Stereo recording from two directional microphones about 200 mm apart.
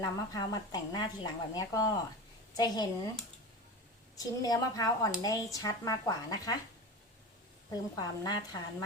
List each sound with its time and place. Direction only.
0.0 s a woman's voice: 15° left (ahead or behind)
4.2 s speech: 20° left (ahead or behind)
7.7 s a woman's voice: 20° left (ahead or behind)